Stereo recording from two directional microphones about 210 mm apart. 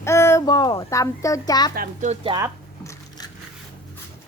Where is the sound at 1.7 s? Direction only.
40° right (ahead or behind).